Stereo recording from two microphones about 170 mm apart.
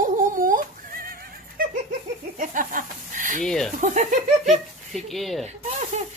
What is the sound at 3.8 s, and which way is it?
Speech, 45° right (ahead or behind).